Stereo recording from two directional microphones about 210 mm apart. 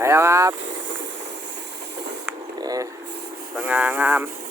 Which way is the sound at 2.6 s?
20° right (ahead or behind).